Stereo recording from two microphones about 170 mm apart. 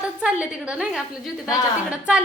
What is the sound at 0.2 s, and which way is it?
A woman's voice, 5° right (ahead or behind).